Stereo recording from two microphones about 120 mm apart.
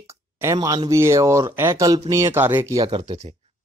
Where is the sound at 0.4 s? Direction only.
25° right (ahead or behind).